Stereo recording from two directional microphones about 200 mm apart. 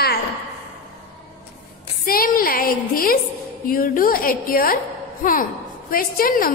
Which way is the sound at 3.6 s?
45° left (ahead or behind).